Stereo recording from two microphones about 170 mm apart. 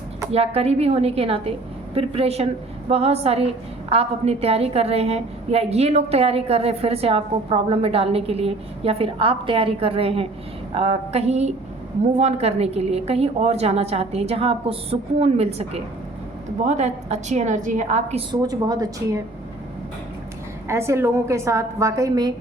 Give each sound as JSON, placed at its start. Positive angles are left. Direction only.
{"t": 0.3, "sound": "a woman's voice", "side_deg": -35}
{"t": 18.3, "sound": "a woman's voice", "side_deg": -20}
{"t": 20.7, "sound": "a woman's voice", "side_deg": -15}